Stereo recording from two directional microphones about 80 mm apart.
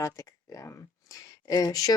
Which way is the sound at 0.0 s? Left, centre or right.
Left.